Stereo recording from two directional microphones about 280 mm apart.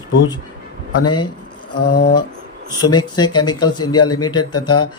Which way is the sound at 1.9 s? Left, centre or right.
Left.